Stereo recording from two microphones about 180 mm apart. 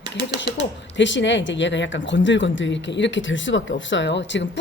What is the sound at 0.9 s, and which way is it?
Speech, 90° left.